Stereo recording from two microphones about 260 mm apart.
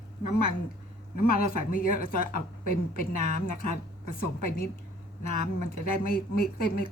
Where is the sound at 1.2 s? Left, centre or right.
Left.